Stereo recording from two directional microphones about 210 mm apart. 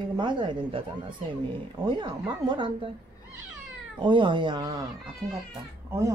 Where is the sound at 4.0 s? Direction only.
20° right (ahead or behind).